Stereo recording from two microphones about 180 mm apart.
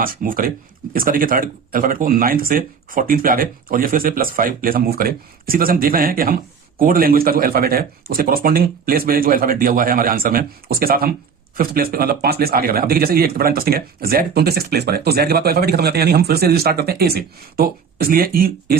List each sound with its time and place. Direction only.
0.0 s speech: 50° right (ahead or behind)